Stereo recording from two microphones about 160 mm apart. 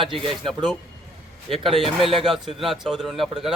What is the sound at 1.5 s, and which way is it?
Speech, 35° right (ahead or behind).